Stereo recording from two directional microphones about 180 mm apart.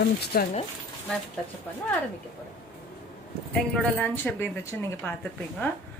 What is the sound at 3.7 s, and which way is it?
A man's voice, 5° left (ahead or behind).